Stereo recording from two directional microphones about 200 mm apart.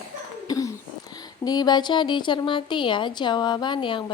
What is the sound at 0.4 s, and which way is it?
A woman's voice, 15° left (ahead or behind).